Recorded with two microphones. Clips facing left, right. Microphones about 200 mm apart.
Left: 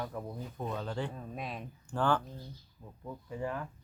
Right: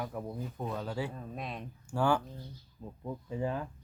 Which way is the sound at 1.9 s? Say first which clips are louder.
Right 1 dB; 10° right (ahead or behind).